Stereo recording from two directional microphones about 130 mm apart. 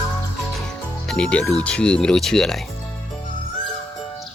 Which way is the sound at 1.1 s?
10° left (ahead or behind).